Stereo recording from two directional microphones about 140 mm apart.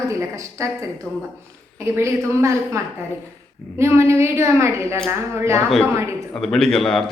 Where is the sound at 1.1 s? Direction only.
10° left (ahead or behind).